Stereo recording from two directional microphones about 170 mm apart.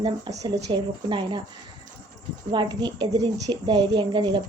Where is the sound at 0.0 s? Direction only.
25° right (ahead or behind).